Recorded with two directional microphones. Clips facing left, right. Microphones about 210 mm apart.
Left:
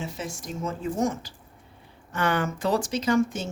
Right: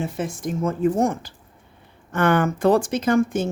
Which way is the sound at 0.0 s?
55° right (ahead or behind).